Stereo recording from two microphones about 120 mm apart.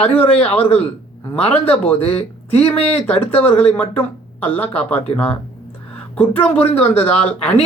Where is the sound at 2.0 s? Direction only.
55° left (ahead or behind).